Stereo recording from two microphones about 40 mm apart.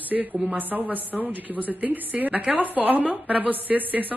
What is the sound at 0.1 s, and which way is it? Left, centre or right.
A woman's voice, right.